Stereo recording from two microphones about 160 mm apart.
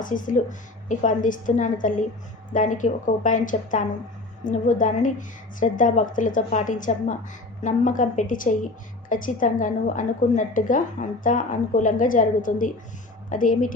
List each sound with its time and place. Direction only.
0.0 s a woman's voice: 55° left (ahead or behind)